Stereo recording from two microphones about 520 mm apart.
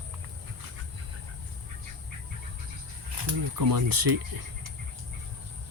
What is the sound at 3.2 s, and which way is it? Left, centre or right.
Speech, right.